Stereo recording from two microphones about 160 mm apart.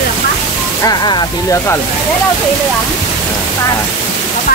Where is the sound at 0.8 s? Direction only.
25° left (ahead or behind).